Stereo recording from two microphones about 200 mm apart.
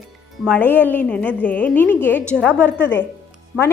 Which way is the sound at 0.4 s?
5° left (ahead or behind).